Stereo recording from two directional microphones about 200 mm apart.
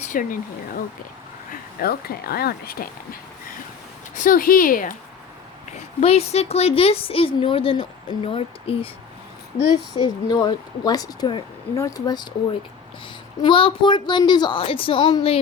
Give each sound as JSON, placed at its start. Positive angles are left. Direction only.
{"t": 0.1, "sound": "speech", "side_deg": 40}
{"t": 1.8, "sound": "speech", "side_deg": 50}
{"t": 6.0, "sound": "a woman's voice", "side_deg": 30}
{"t": 9.9, "sound": "a woman's voice", "side_deg": 20}
{"t": 13.4, "sound": "a woman's voice", "side_deg": 25}